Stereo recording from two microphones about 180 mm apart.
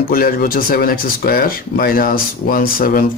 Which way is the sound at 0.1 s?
55° left (ahead or behind).